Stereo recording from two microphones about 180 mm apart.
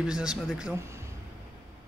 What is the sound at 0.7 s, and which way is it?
Speech, 15° right (ahead or behind).